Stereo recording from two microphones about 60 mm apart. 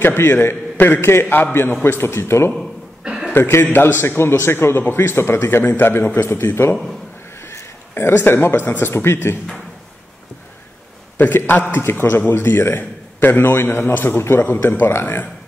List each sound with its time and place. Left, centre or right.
0.0 s a man's voice: left
3.0 s a sound: centre
3.3 s a man's voice: left
11.1 s a man's voice: left